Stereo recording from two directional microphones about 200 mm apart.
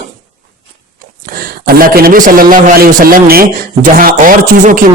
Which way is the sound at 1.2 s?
45° right (ahead or behind).